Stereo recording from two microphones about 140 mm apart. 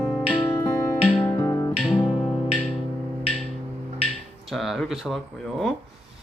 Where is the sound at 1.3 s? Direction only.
20° left (ahead or behind).